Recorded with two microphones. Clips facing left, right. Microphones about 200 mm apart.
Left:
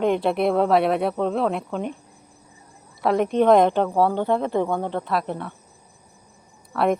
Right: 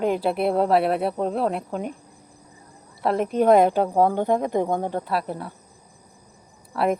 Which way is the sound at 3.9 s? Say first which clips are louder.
Right 1 dB; 45° right (ahead or behind).